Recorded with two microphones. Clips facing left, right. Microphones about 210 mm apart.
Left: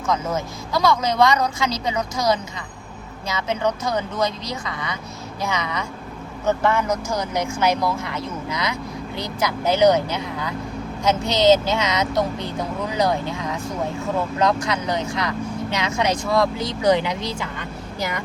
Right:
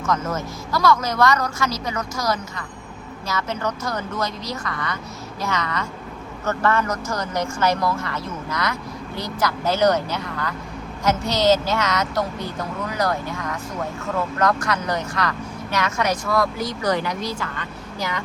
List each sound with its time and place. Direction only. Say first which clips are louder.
0.0 s speech: left 1 dB; 15° left (ahead or behind)